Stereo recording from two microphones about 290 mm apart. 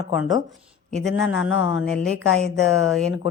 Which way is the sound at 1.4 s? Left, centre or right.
Left.